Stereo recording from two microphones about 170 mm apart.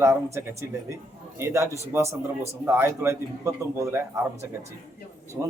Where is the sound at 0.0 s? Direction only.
15° right (ahead or behind).